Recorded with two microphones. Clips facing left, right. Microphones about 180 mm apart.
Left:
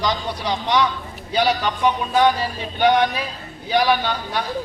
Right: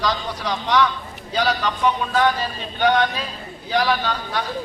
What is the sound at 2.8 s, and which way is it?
A man's voice, 15° left (ahead or behind).